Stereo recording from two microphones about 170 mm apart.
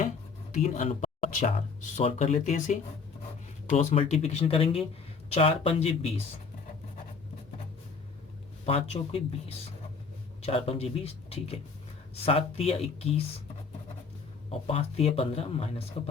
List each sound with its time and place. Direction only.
0.5 s speech: 45° left (ahead or behind)
8.6 s speech: 35° left (ahead or behind)
10.4 s speech: 35° left (ahead or behind)
14.7 s speech: 35° left (ahead or behind)